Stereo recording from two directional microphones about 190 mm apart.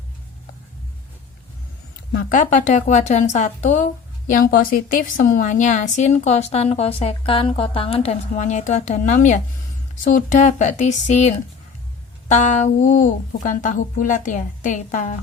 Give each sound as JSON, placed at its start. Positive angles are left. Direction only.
{"t": 2.1, "sound": "a woman's voice", "side_deg": 45}